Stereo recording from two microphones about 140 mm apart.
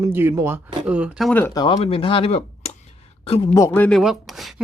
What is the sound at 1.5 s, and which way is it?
Speech, 35° left (ahead or behind).